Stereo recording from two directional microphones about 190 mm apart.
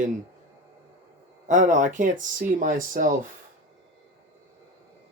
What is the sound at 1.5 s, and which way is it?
Speech, 40° right (ahead or behind).